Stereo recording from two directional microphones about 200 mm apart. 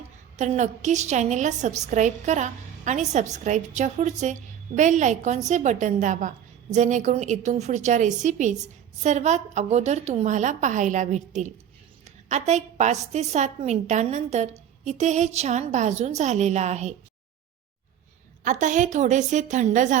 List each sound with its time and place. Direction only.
0.3 s a woman's voice: 35° right (ahead or behind)
18.4 s a woman's voice: 40° right (ahead or behind)